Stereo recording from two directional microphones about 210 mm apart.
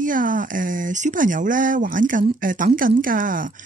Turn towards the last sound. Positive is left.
turn(degrees=-40)  # may be behind; listen again after turning